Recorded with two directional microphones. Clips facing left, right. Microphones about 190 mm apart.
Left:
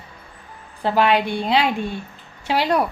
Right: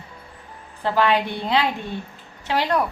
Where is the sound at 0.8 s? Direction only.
15° left (ahead or behind).